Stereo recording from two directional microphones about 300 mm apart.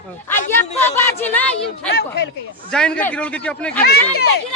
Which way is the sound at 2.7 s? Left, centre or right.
Centre.